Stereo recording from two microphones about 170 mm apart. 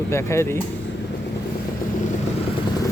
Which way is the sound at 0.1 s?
15° left (ahead or behind).